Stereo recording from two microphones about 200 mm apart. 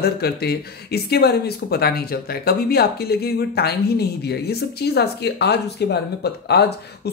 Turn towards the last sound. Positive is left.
turn(degrees=55)  # may be behind; listen again after turning